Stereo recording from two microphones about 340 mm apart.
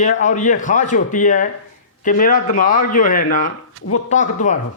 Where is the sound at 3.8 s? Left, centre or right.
Right.